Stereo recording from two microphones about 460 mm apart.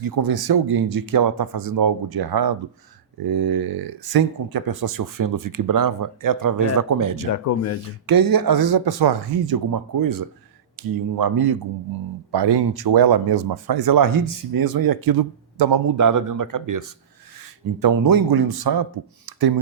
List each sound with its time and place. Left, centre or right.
0.0 s speech: right
7.4 s speech: left
8.0 s speech: right
15.9 s speech: right